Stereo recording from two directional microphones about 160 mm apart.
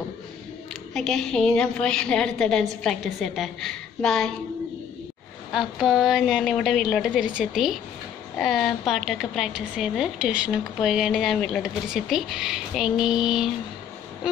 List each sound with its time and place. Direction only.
0.9 s speech: 5° left (ahead or behind)
5.5 s speech: 5° right (ahead or behind)